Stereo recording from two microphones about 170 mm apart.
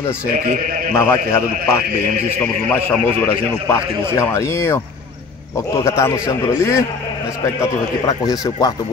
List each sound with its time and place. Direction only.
0.9 s a man's voice: 15° left (ahead or behind)
5.9 s a man's voice: 15° left (ahead or behind)